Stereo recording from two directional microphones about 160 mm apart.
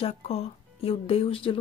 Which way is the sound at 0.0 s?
40° left (ahead or behind).